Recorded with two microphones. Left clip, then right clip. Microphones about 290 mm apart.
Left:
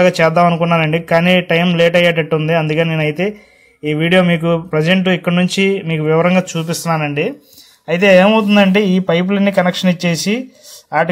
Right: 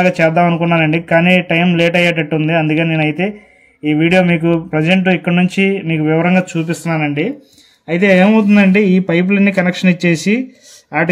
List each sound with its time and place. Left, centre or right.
0.0 s a man's voice: left